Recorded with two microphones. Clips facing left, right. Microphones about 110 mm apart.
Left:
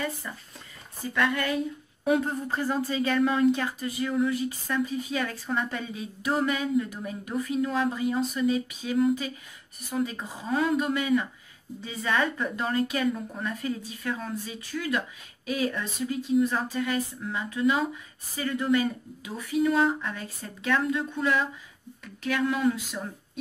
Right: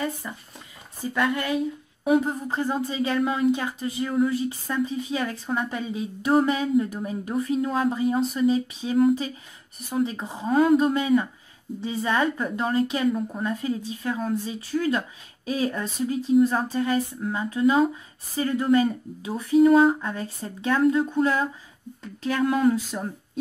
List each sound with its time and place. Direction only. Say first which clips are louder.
0.2 s a woman's voice: right 3 dB; 20° right (ahead or behind)
3.2 s a woman's voice: even; 10° right (ahead or behind); by 8.9 s 25° right (ahead or behind)
10.0 s a woman's voice: right 5 dB; 25° right (ahead or behind)
21.0 s speech: right 4 dB; 40° right (ahead or behind)
22.0 s speech: right 2 dB; 30° right (ahead or behind)
22.4 s a sound: right 5 dB; 45° right (ahead or behind)